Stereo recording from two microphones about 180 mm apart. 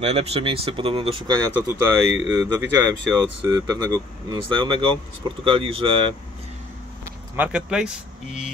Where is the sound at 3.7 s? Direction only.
20° right (ahead or behind).